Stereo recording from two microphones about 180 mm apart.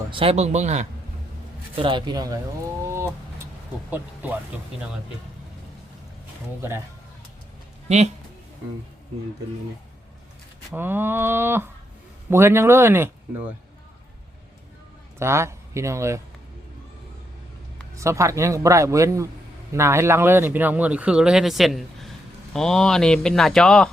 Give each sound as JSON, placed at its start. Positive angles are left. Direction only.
{"t": 0.1, "sound": "speech", "side_deg": -30}
{"t": 1.7, "sound": "speech", "side_deg": -30}
{"t": 2.8, "sound": "a sound", "side_deg": -15}
{"t": 3.9, "sound": "speech", "side_deg": -10}
{"t": 6.6, "sound": "speech", "side_deg": -15}
{"t": 7.9, "sound": "speech", "side_deg": -35}
{"t": 10.7, "sound": "speech", "side_deg": -10}
{"t": 15.2, "sound": "speech", "side_deg": -15}
{"t": 17.9, "sound": "speech", "side_deg": -15}